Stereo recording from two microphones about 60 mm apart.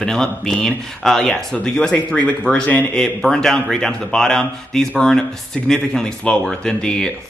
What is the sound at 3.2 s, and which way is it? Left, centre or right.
Speech, centre.